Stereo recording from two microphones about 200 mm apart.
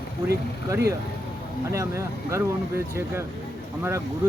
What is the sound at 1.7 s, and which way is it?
Speech, 15° right (ahead or behind).